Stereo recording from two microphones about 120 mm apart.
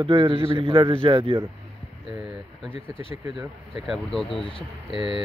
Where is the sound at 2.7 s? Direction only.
50° left (ahead or behind).